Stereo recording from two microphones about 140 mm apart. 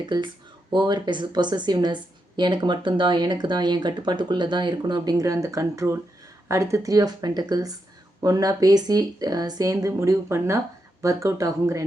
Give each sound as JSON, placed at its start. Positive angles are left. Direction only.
{"t": 0.0, "sound": "a woman's voice", "side_deg": -30}